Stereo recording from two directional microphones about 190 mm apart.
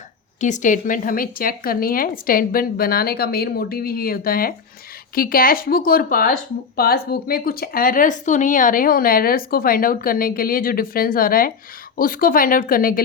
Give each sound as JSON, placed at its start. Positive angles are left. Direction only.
{"t": 0.3, "sound": "speech", "side_deg": 40}